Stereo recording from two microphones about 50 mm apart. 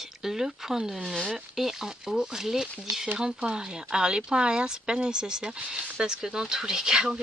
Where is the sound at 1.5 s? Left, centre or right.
Centre.